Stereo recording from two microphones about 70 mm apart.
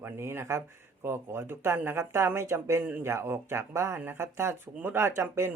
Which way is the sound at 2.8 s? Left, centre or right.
Right.